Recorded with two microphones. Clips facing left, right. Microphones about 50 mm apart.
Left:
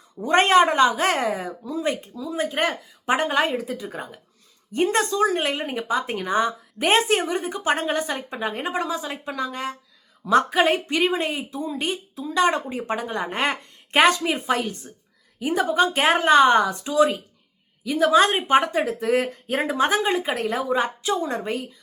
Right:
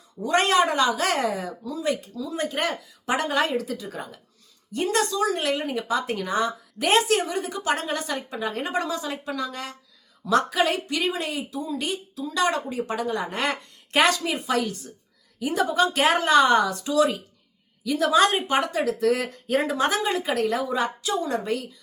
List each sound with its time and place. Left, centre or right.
0.2 s speech: left
2.1 s speech: centre
2.6 s speech: left
3.5 s speech: centre
3.8 s speech: left